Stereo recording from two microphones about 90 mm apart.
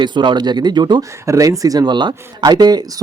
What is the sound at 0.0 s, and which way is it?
Speech, 60° right (ahead or behind).